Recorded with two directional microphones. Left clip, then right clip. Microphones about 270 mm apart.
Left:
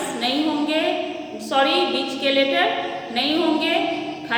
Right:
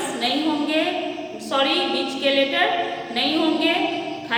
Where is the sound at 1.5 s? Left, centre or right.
Centre.